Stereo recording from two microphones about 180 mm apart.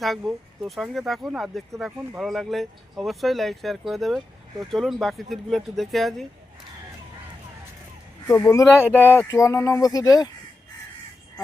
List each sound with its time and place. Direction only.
0.0 s speech: centre (ahead or behind)
8.3 s speech: 15° left (ahead or behind)
8.8 s speech: 10° right (ahead or behind)
9.3 s speech: 15° left (ahead or behind)